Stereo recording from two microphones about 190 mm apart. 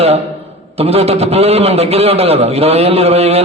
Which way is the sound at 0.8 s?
30° right (ahead or behind).